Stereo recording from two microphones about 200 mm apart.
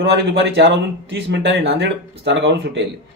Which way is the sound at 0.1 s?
60° right (ahead or behind).